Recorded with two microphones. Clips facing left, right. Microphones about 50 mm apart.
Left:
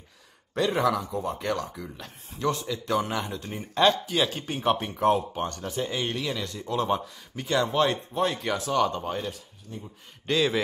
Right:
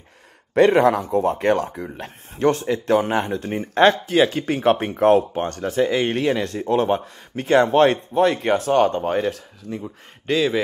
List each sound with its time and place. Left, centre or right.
0.6 s speech: right
0.8 s speech: right
4.3 s speech: right
4.6 s speech: right
9.3 s speech: right
10.2 s speech: centre